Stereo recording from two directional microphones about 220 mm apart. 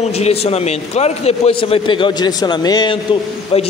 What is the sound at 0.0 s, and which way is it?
A man's voice, 30° left (ahead or behind).